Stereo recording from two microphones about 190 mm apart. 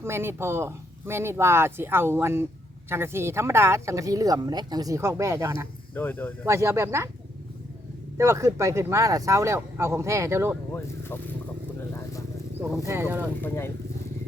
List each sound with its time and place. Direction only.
0.0 s speech: 15° right (ahead or behind)
5.9 s speech: 10° left (ahead or behind)
6.4 s speech: 15° right (ahead or behind)
8.2 s speech: 15° right (ahead or behind)
12.8 s speech: 10° right (ahead or behind)